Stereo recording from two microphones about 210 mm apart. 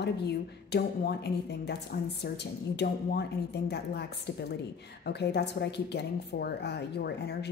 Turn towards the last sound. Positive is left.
turn(degrees=50)  # may be behind; listen again after turning